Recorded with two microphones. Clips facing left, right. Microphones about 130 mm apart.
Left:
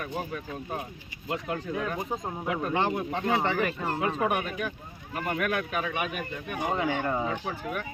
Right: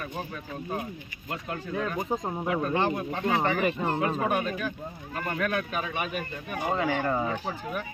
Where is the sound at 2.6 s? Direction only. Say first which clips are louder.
Left 2 dB; 20° left (ahead or behind).